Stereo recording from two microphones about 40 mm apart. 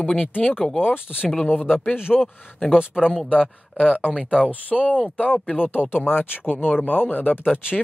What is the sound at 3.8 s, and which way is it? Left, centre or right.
Speech, left.